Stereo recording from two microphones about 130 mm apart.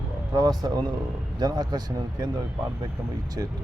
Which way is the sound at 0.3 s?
30° right (ahead or behind).